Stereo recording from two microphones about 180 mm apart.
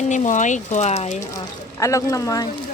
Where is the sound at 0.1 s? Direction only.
45° left (ahead or behind).